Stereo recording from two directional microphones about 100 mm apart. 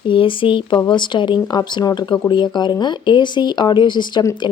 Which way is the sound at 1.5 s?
40° left (ahead or behind).